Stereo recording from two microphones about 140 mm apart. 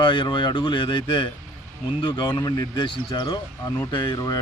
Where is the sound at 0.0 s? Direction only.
35° left (ahead or behind).